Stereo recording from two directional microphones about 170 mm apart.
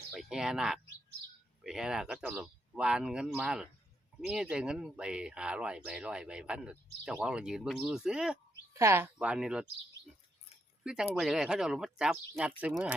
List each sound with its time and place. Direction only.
0.1 s speech: 5° right (ahead or behind)
8.7 s speech: 15° right (ahead or behind)
9.1 s speech: 5° right (ahead or behind)
10.8 s speech: 5° right (ahead or behind)